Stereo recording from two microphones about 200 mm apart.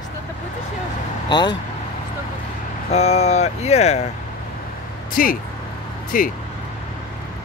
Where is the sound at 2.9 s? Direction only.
30° left (ahead or behind).